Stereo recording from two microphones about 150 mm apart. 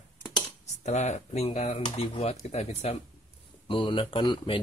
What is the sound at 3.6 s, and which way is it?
Speech, 35° left (ahead or behind).